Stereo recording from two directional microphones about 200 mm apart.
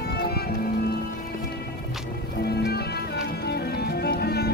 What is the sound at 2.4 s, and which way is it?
Music, 55° left (ahead or behind).